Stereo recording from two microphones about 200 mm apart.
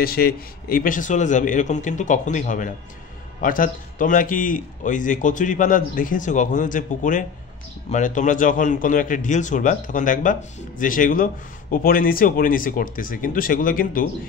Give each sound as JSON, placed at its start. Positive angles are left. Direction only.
{"t": 0.0, "sound": "a man's voice", "side_deg": 50}